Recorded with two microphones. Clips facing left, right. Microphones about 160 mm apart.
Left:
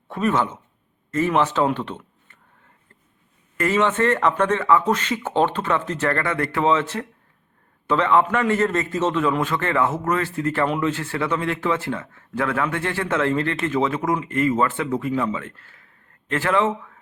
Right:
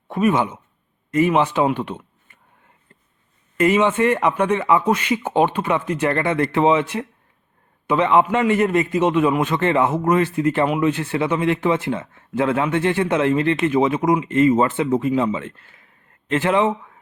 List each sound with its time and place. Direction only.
0.1 s a man's voice: 15° right (ahead or behind)
3.6 s a man's voice: 15° right (ahead or behind)